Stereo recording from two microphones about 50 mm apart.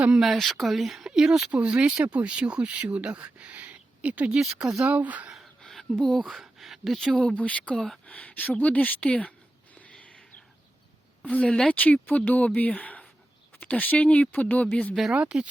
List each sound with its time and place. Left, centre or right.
0.1 s speech: centre
1.5 s speech: right
6.0 s speech: centre
7.1 s speech: centre
7.3 s speech: left
10.0 s a sound: left
11.2 s speech: left
15.1 s speech: right